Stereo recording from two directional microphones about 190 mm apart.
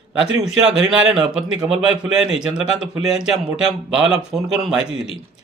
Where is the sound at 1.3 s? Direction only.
5° right (ahead or behind).